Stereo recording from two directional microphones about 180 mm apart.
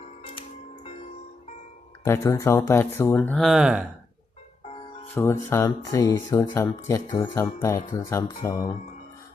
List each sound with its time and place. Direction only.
0.2 s music: 30° left (ahead or behind)
2.0 s speech: 15° left (ahead or behind); by 3.8 s 5° right (ahead or behind)
5.1 s speech: 15° left (ahead or behind)